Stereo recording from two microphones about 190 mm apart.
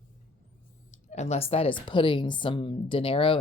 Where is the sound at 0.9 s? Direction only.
35° left (ahead or behind).